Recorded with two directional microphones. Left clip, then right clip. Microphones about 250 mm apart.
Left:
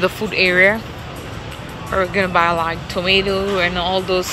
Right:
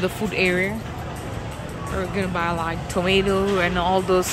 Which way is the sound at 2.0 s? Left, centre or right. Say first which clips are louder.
Left 9 dB; centre.